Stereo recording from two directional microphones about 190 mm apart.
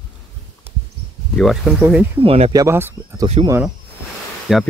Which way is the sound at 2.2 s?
35° right (ahead or behind).